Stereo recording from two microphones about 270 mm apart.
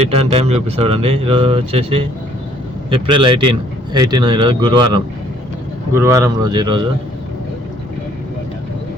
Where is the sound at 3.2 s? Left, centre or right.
Centre.